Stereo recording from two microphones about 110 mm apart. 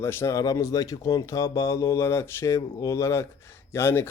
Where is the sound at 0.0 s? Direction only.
20° left (ahead or behind).